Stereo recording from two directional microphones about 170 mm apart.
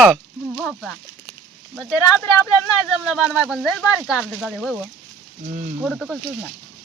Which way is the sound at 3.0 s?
5° right (ahead or behind).